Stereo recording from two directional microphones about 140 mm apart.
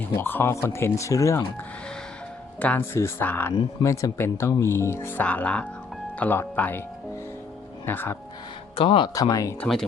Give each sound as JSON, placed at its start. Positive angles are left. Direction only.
{"t": 0.2, "sound": "speech", "side_deg": 15}
{"t": 2.6, "sound": "speech", "side_deg": 10}
{"t": 3.5, "sound": "speech", "side_deg": 30}
{"t": 7.9, "sound": "speech", "side_deg": 15}
{"t": 8.7, "sound": "speech", "side_deg": 40}
{"t": 9.1, "sound": "speech", "side_deg": 25}
{"t": 9.6, "sound": "speech", "side_deg": 0}